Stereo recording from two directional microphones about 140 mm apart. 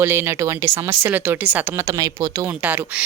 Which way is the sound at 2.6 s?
10° right (ahead or behind).